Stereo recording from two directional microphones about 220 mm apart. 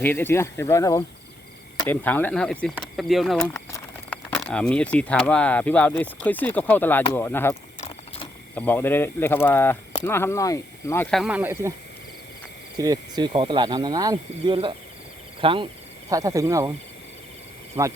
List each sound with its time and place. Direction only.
0.0 s speech: 10° left (ahead or behind)
8.5 s speech: 10° left (ahead or behind); by 11.7 s 10° right (ahead or behind)
12.7 s speech: 15° right (ahead or behind)
17.7 s speech: 15° right (ahead or behind)